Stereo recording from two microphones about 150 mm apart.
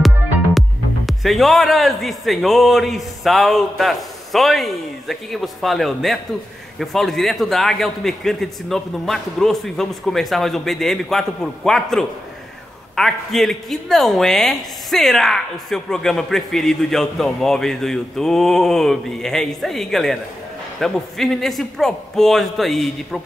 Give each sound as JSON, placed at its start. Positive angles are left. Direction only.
{"t": 0.6, "sound": "a woman's voice", "side_deg": 0}